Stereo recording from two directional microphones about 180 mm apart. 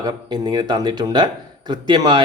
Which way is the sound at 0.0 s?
25° right (ahead or behind).